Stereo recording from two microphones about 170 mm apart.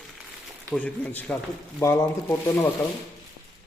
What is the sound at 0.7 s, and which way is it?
Speech, 10° left (ahead or behind).